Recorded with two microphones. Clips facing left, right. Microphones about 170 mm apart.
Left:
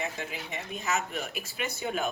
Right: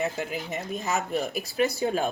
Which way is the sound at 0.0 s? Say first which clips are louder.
Right 6 dB; 40° right (ahead or behind).